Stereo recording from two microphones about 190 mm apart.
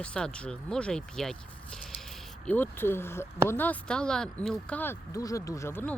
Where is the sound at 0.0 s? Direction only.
5° left (ahead or behind).